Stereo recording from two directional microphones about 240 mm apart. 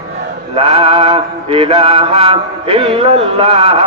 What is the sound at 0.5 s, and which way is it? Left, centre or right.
A man's voice, right.